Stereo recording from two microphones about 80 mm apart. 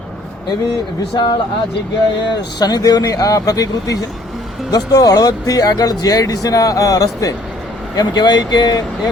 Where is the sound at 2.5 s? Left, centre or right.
Left.